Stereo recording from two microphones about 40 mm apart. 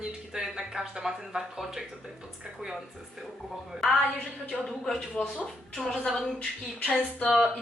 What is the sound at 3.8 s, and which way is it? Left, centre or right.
Speech, centre.